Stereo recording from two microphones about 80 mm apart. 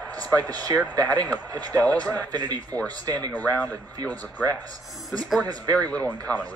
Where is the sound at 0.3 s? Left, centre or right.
Right.